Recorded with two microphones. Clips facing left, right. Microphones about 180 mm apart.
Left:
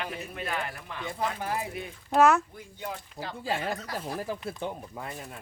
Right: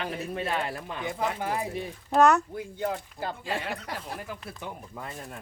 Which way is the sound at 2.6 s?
65° right (ahead or behind).